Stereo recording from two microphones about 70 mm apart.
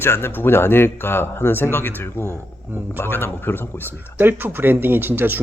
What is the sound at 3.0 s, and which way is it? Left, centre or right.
Speech, left.